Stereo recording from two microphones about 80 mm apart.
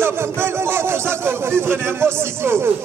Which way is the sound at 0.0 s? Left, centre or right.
Right.